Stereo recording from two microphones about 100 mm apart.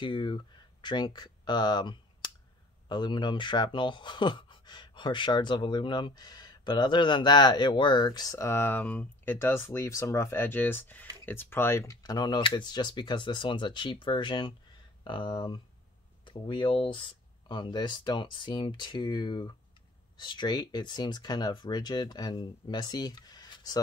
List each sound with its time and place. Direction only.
0.0 s speech: 55° left (ahead or behind)
8.5 s speech: 20° left (ahead or behind)
12.0 s speech: 45° left (ahead or behind)